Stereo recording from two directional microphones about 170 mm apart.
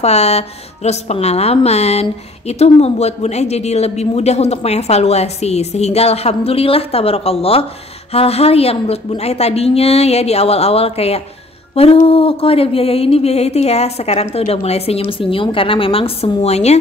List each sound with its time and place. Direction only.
0.0 s a woman's voice: 40° left (ahead or behind)
11.7 s music: 35° left (ahead or behind)
12.1 s a woman's voice: 35° left (ahead or behind)
16.4 s a woman's voice: 40° left (ahead or behind)